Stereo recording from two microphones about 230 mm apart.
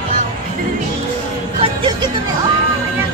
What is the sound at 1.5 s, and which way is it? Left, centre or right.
Music, right.